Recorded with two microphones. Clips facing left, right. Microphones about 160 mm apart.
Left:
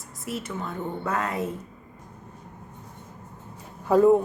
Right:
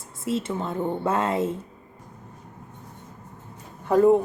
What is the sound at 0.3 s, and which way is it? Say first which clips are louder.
Speech: right 5 dB; 25° right (ahead or behind).